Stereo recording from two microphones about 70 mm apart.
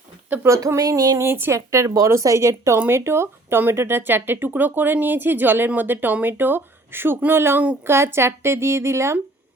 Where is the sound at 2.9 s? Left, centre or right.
Right.